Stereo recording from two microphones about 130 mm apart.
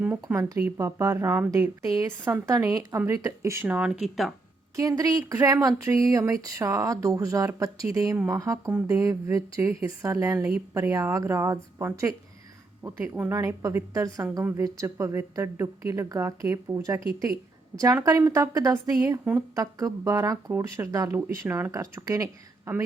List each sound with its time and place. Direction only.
0.0 s speech: 15° right (ahead or behind)
4.8 s speech: 25° right (ahead or behind)